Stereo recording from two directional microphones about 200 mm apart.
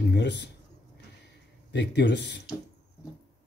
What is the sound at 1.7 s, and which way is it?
Speech, 60° left (ahead or behind).